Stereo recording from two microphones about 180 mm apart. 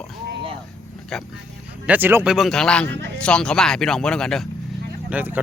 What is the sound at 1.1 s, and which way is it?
Speech, centre (ahead or behind).